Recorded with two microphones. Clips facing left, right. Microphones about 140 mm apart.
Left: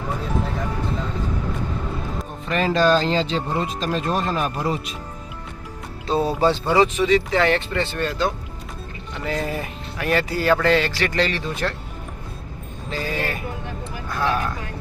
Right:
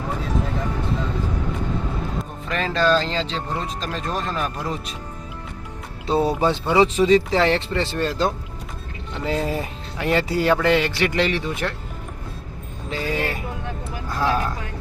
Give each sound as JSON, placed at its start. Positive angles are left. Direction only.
{"t": 2.5, "sound": "speech", "side_deg": 10}
{"t": 6.1, "sound": "speech", "side_deg": -15}
{"t": 6.9, "sound": "speech", "side_deg": -35}
{"t": 12.9, "sound": "speech", "side_deg": -20}